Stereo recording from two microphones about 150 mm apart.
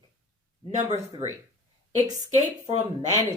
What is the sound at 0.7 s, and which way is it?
Speech, 50° right (ahead or behind).